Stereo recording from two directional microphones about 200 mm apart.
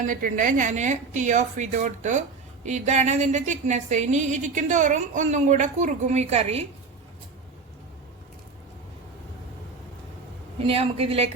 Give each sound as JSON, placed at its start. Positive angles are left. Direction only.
{"t": 0.0, "sound": "a woman's voice", "side_deg": -40}
{"t": 10.7, "sound": "a woman's voice", "side_deg": -30}